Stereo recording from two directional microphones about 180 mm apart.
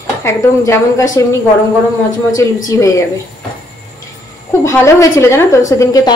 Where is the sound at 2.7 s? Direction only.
20° left (ahead or behind).